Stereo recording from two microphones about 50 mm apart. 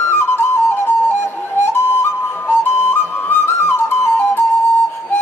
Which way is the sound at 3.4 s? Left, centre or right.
Left.